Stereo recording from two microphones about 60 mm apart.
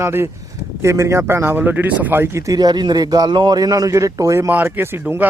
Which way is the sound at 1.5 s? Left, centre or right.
Right.